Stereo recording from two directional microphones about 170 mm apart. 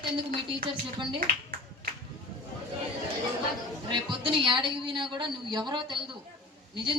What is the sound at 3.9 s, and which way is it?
A woman's voice, 30° right (ahead or behind).